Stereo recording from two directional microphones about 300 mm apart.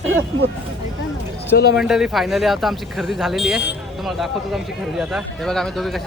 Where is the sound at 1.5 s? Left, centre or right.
Left.